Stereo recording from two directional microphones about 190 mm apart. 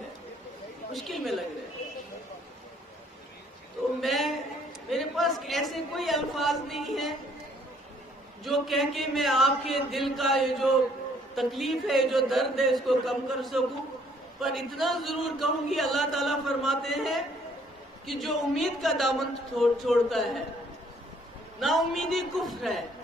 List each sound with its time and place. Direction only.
0.9 s speech: centre (ahead or behind)
4.0 s a sound: centre (ahead or behind)
4.8 s a man's voice: centre (ahead or behind)
8.5 s speech: centre (ahead or behind)
21.5 s speech: centre (ahead or behind)